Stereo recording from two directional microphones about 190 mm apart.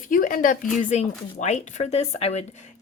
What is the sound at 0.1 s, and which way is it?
A woman's voice, 45° left (ahead or behind).